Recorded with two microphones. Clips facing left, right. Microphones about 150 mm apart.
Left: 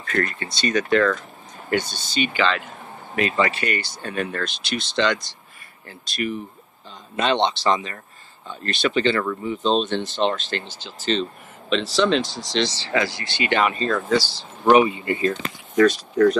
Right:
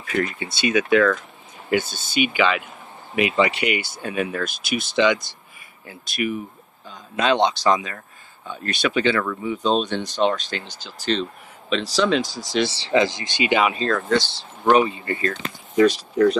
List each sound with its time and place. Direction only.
0.0 s speech: 10° right (ahead or behind)
1.9 s speech: 50° right (ahead or behind)
2.1 s speech: 10° right (ahead or behind)
12.9 s speech: 20° right (ahead or behind)
13.8 s speech: 5° left (ahead or behind)
15.7 s speech: 15° right (ahead or behind)